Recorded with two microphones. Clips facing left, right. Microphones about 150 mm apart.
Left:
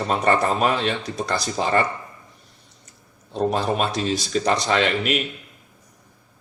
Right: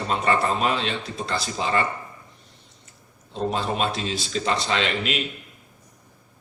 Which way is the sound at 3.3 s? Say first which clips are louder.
Left 4 dB; 45° left (ahead or behind).